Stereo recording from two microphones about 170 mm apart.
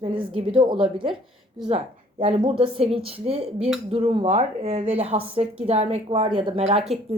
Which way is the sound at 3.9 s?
35° right (ahead or behind).